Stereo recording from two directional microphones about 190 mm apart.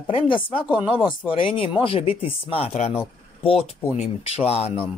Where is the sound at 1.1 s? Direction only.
30° left (ahead or behind).